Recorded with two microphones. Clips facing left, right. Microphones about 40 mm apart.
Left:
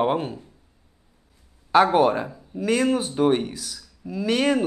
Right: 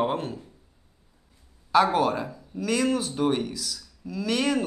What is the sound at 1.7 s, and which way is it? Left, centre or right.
Speech, left.